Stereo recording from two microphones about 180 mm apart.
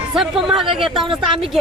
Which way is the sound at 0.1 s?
Centre (ahead or behind).